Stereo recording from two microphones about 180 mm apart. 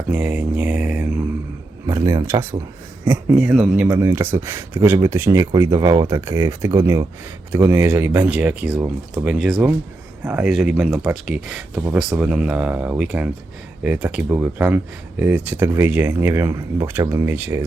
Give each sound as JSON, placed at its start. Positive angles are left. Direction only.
{"t": 0.1, "sound": "speech", "side_deg": -5}